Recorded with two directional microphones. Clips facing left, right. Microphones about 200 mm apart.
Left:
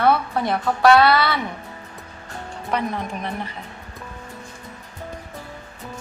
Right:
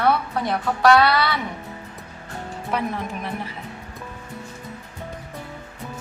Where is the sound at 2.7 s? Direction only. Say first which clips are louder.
Left 1 dB; 5° right (ahead or behind).